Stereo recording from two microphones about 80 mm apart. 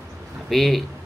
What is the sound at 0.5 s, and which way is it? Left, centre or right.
Speech, centre.